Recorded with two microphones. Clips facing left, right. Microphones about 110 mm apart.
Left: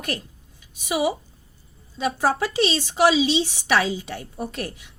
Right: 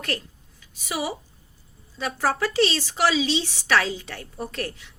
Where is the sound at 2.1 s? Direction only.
20° left (ahead or behind).